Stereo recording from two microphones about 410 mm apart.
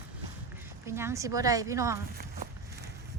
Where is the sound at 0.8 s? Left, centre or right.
Centre.